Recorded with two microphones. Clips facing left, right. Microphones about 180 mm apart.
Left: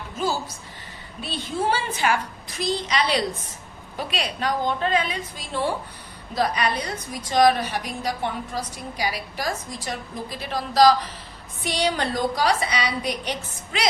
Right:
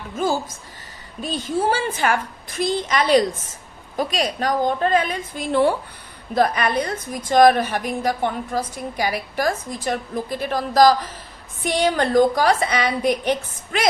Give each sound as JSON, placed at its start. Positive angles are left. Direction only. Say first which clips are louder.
{"t": 1.2, "sound": "a woman's voice", "louder": "right 4 dB", "side_deg": -45}